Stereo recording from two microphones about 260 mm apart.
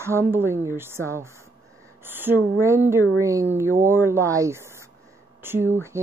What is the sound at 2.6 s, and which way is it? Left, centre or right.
A woman's voice, centre.